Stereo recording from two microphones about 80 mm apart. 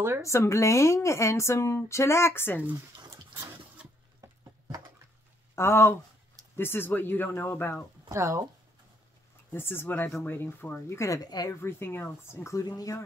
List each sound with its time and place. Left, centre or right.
0.2 s speech: left
4.2 s a sound: right
5.6 s speech: left
8.1 s speech: right
9.5 s speech: left
11.6 s speech: left
12.5 s speech: left